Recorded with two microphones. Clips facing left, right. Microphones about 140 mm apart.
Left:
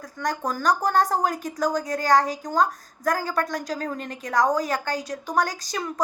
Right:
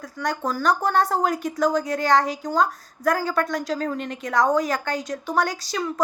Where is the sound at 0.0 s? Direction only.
40° left (ahead or behind).